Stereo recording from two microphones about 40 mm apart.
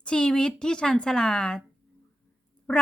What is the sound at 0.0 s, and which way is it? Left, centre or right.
A woman's voice, left.